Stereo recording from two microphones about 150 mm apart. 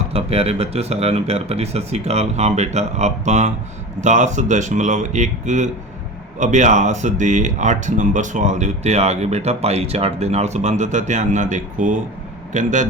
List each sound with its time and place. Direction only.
0.1 s speech: 40° right (ahead or behind); by 12.9 s 55° right (ahead or behind)